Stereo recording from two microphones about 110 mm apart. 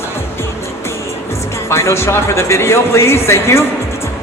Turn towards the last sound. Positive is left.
turn(degrees=25)  # may be behind; listen again after turning